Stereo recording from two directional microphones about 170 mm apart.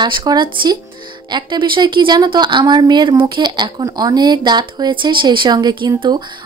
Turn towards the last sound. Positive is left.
turn(degrees=-25)  # may be behind; listen again after turning